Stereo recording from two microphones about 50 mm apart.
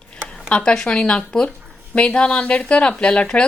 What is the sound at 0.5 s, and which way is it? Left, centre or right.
A woman's voice, centre.